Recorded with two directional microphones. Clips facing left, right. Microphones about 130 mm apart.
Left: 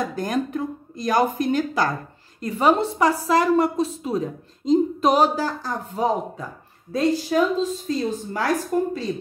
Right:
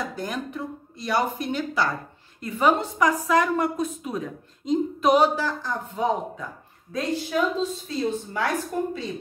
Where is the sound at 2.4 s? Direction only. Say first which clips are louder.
Left 3 dB; 30° left (ahead or behind).